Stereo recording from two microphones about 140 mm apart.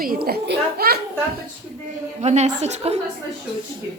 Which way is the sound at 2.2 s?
55° right (ahead or behind).